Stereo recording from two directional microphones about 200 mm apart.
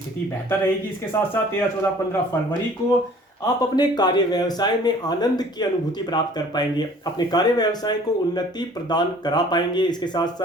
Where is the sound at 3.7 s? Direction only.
20° left (ahead or behind).